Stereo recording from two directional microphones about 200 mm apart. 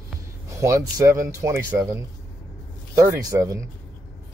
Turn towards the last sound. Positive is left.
turn(degrees=-15)  # may be behind; listen again after turning